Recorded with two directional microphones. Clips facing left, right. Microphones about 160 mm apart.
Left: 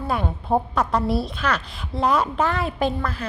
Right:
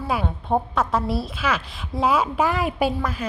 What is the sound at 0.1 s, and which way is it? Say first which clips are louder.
A woman's voice: left 1 dB; centre (ahead or behind).